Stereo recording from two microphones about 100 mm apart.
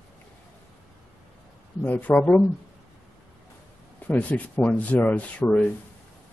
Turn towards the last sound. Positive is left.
turn(degrees=15)  # may be behind; listen again after turning